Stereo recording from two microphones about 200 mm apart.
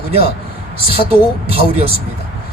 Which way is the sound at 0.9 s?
30° right (ahead or behind).